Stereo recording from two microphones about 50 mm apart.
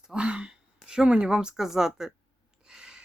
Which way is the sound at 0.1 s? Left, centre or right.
Centre.